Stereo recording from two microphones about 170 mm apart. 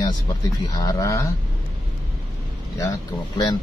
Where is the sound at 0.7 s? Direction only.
20° left (ahead or behind).